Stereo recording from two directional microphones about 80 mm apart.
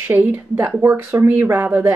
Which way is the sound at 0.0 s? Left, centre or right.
Right.